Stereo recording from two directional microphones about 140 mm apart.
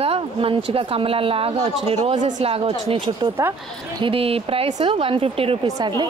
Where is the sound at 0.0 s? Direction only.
45° right (ahead or behind).